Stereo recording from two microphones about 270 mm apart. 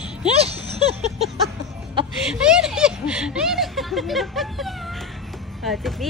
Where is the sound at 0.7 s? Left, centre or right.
Right.